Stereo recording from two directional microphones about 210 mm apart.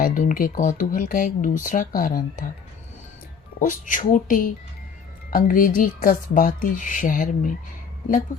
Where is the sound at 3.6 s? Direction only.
35° left (ahead or behind).